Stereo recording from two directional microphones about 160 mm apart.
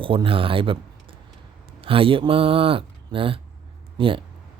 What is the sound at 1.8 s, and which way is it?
Speech, 35° right (ahead or behind).